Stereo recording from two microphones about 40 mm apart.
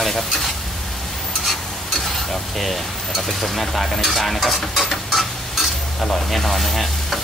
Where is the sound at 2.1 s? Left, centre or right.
Centre.